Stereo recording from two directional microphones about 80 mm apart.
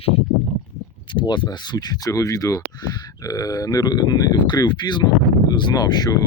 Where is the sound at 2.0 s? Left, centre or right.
Left.